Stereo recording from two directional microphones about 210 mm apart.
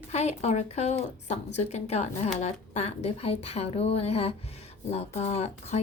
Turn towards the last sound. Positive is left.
turn(degrees=30)  # may be behind; listen again after turning